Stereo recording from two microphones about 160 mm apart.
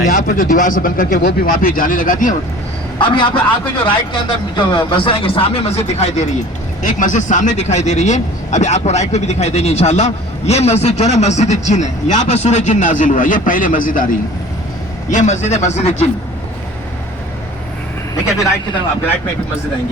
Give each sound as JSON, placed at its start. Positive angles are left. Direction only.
{"t": 0.3, "sound": "speech", "side_deg": 60}
{"t": 3.0, "sound": "speech", "side_deg": 30}
{"t": 15.1, "sound": "speech", "side_deg": 50}